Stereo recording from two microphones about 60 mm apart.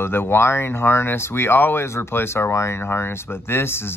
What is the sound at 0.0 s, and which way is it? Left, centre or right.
Speech, left.